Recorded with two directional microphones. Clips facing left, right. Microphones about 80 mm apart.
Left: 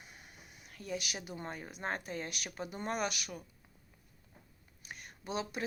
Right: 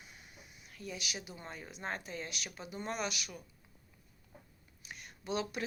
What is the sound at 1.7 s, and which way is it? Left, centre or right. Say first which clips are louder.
Speech: left 2 dB; left.